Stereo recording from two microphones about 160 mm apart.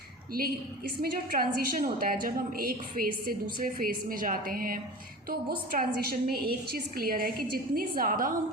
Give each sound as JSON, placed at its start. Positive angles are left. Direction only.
{"t": 0.3, "sound": "a woman's voice", "side_deg": -70}